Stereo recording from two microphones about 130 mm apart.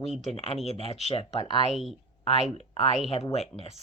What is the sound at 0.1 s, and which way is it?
Speech, 55° left (ahead or behind).